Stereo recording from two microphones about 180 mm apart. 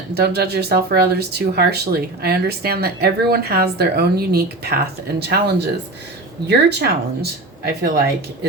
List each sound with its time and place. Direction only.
0.1 s speech: 60° right (ahead or behind)